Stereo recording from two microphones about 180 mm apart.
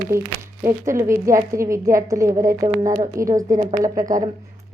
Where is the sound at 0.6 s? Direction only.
15° right (ahead or behind).